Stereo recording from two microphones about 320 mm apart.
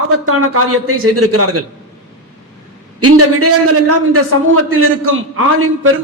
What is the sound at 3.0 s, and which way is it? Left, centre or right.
A man's voice, right.